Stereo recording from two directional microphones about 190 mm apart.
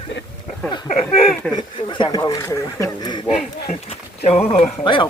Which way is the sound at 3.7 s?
30° left (ahead or behind).